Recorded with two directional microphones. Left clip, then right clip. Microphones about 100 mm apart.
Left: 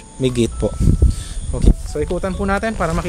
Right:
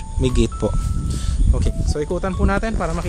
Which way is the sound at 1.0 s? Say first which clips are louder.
Right 1 dB; 40° right (ahead or behind).